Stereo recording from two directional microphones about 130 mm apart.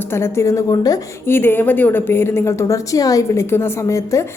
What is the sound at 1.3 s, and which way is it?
A woman's voice, 15° left (ahead or behind).